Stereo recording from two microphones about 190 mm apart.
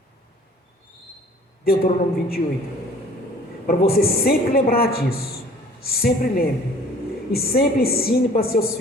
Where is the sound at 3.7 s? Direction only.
55° left (ahead or behind).